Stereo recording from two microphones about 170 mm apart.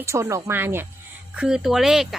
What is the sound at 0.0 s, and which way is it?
Speech, 15° right (ahead or behind).